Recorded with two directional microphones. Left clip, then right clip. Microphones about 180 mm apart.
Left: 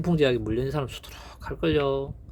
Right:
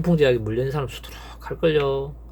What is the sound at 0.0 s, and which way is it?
Speech, 25° left (ahead or behind).